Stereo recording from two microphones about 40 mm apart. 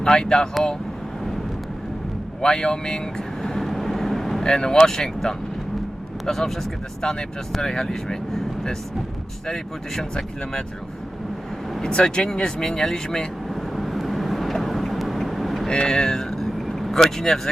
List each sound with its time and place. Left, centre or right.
0.0 s speech: centre
2.4 s vehicle: centre
4.4 s speech: centre
9.5 s speech: centre
11.8 s speech: left
13.5 s vehicle: centre
15.6 s vehicle: centre